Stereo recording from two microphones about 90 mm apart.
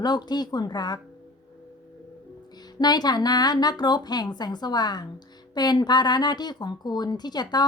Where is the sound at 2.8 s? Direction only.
50° left (ahead or behind).